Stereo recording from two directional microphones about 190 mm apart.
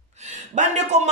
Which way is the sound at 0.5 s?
40° right (ahead or behind).